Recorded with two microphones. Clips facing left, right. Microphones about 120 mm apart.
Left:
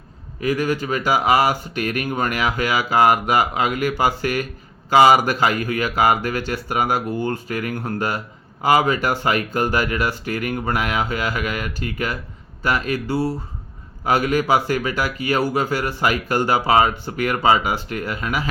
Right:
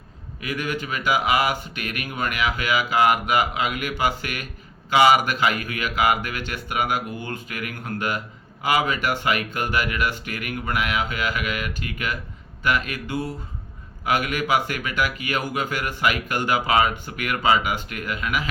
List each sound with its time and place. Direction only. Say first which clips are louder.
0.3 s speech: left 7 dB; 35° left (ahead or behind)